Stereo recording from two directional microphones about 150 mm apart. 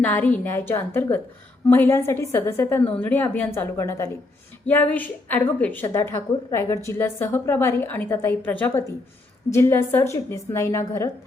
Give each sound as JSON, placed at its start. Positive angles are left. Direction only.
{"t": 0.0, "sound": "a woman's voice", "side_deg": 10}